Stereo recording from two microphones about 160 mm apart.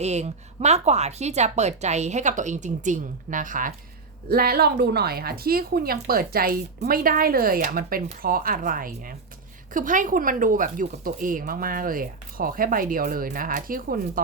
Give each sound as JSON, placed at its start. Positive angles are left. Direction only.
{"t": 0.0, "sound": "a woman's voice", "side_deg": -45}
{"t": 4.3, "sound": "speech", "side_deg": -70}